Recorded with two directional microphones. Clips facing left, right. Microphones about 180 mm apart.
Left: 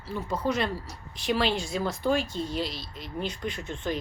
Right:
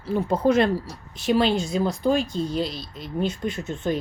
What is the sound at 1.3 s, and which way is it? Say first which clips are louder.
Speech: right 6 dB; 40° right (ahead or behind).